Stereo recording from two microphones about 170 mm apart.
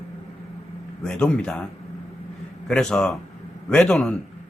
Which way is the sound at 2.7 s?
5° left (ahead or behind).